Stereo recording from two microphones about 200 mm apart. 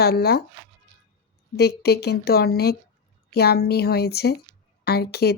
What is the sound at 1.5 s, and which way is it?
Speech, 55° left (ahead or behind).